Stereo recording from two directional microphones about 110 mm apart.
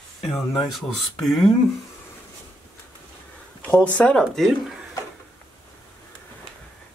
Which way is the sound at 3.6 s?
15° left (ahead or behind).